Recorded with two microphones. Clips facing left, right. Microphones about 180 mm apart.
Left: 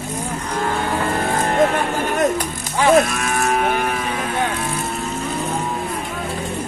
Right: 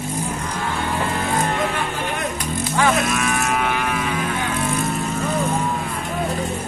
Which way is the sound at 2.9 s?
45° left (ahead or behind).